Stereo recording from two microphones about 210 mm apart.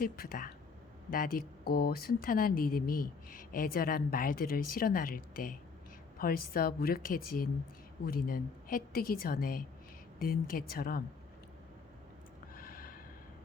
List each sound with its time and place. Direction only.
0.0 s speech: 45° left (ahead or behind)
12.5 s snort: 45° left (ahead or behind)